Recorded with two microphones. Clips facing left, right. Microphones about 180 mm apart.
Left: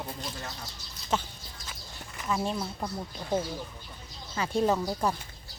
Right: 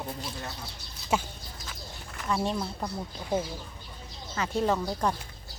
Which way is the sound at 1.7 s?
Centre (ahead or behind).